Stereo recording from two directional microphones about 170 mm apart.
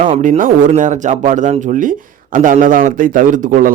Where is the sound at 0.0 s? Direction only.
50° right (ahead or behind).